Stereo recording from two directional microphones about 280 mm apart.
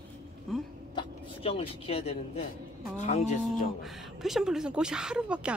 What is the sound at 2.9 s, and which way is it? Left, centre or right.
Speech, left.